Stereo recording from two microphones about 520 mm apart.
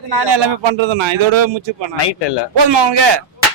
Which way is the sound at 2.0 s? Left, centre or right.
Left.